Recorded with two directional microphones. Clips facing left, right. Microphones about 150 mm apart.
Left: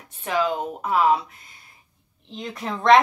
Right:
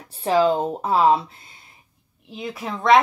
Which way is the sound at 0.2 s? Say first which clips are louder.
Right 6 dB; 30° right (ahead or behind).